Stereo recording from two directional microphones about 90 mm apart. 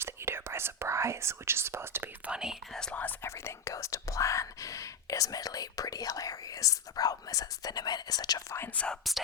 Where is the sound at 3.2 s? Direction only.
30° left (ahead or behind); by 8.4 s 45° left (ahead or behind).